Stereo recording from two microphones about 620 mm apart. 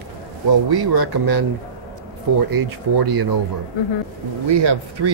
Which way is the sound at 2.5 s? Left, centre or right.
Right.